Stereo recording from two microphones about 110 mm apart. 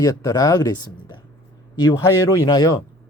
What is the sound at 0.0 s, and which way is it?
Speech, 35° left (ahead or behind).